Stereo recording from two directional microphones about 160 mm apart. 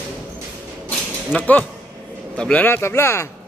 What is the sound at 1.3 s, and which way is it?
Speech, 10° left (ahead or behind).